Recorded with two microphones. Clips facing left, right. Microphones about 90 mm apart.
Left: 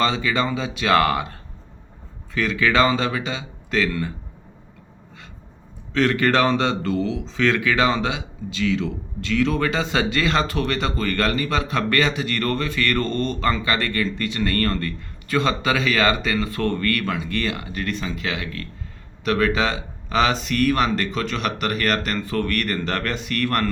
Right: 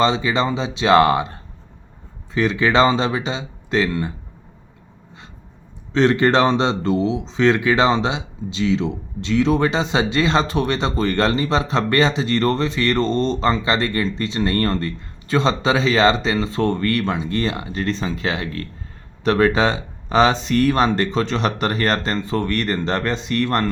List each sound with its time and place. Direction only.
0.0 s speech: 25° right (ahead or behind)
5.9 s speech: 25° right (ahead or behind)